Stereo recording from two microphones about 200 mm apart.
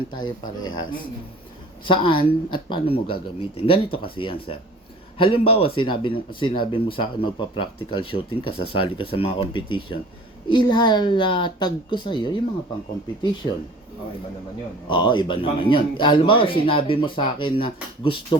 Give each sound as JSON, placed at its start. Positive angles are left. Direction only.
{"t": 0.1, "sound": "speech", "side_deg": 20}
{"t": 14.8, "sound": "speech", "side_deg": 25}